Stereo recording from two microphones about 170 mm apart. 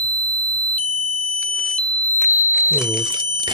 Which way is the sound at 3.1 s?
25° right (ahead or behind).